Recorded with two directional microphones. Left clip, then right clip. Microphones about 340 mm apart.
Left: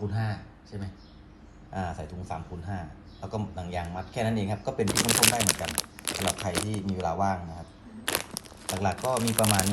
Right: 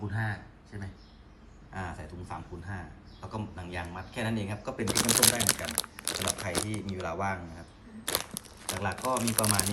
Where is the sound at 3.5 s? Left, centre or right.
Centre.